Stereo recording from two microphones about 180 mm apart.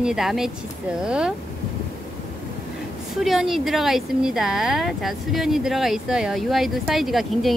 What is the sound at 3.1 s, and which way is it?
Speech, centre (ahead or behind).